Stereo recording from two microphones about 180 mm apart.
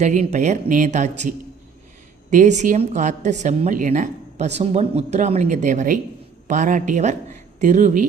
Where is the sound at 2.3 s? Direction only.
40° right (ahead or behind).